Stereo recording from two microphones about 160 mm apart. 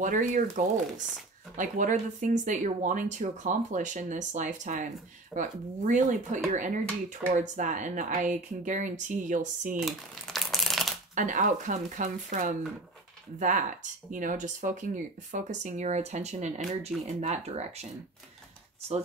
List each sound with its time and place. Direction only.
0.0 s speech: 50° right (ahead or behind)
9.8 s crumpling: centre (ahead or behind)
11.1 s speech: 55° right (ahead or behind)